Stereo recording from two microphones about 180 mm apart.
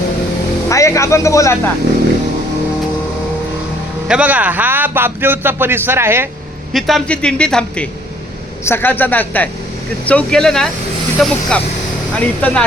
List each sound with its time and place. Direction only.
0.7 s speech: 15° left (ahead or behind)
4.1 s speech: 10° right (ahead or behind)
6.7 s a man's voice: centre (ahead or behind)